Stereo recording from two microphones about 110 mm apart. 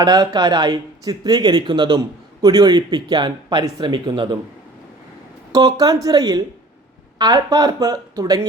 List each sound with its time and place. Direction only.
0.0 s speech: 35° right (ahead or behind)
5.5 s speech: 30° right (ahead or behind)